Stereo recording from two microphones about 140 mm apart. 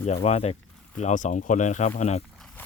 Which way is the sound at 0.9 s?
60° left (ahead or behind).